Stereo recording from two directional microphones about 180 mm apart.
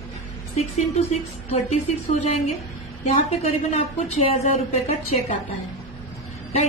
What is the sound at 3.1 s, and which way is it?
A woman's voice, 35° left (ahead or behind).